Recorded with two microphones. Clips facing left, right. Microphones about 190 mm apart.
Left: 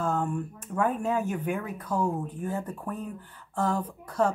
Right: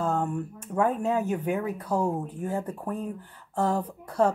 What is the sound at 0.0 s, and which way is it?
Speech, 20° right (ahead or behind).